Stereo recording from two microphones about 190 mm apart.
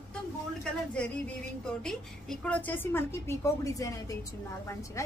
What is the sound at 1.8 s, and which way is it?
A woman's voice, 5° left (ahead or behind).